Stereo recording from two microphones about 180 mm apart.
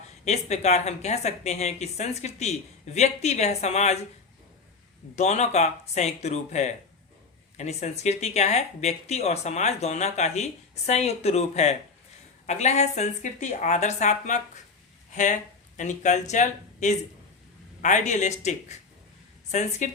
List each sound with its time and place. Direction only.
0.3 s speech: 40° left (ahead or behind)
5.1 s speech: 40° left (ahead or behind)